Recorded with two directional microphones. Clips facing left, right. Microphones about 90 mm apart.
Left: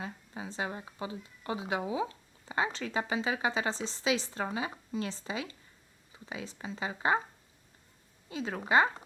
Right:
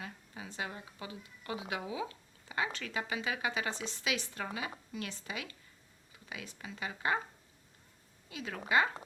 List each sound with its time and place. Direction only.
0.0 s a woman's voice: 30° left (ahead or behind)
8.3 s speech: 30° left (ahead or behind)